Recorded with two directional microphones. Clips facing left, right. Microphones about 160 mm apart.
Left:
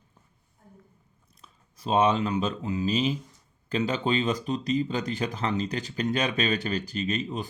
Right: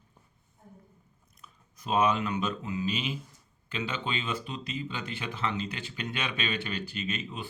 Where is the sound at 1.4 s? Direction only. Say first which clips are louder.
Left 5 dB; 30° left (ahead or behind).